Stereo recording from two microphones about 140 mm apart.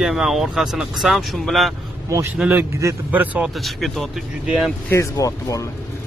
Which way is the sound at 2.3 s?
10° right (ahead or behind).